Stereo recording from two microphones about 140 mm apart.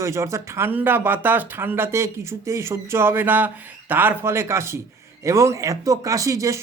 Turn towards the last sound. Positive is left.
turn(degrees=-25)  # may be behind; listen again after turning